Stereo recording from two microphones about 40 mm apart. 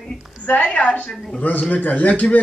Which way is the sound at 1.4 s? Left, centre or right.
Left.